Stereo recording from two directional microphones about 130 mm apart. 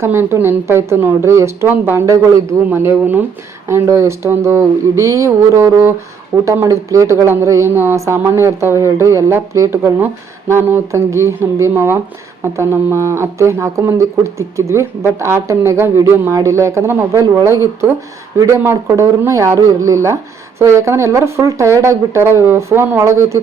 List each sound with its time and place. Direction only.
0.0 s speech: 20° right (ahead or behind)